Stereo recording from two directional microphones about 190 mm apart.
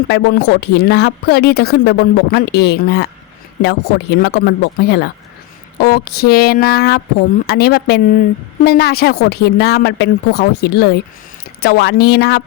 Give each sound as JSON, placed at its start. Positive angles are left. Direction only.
{"t": 0.1, "sound": "a woman's voice", "side_deg": 60}